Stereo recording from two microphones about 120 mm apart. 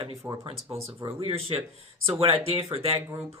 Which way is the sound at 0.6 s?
25° right (ahead or behind).